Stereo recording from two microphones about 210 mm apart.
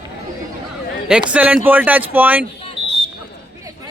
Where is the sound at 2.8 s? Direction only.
25° left (ahead or behind).